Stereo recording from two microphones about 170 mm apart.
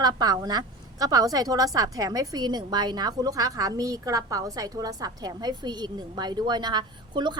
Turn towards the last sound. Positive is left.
turn(degrees=-25)  # may be behind; listen again after turning